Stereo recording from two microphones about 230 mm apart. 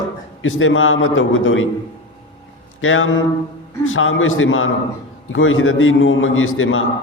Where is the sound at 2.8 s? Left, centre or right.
Left.